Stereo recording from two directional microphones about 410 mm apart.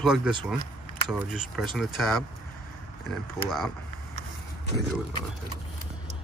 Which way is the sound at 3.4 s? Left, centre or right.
Centre.